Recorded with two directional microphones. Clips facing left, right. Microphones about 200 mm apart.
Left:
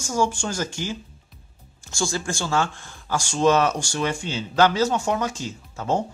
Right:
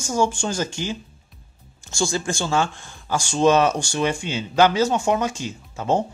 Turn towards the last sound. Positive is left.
turn(degrees=-20)  # may be behind; listen again after turning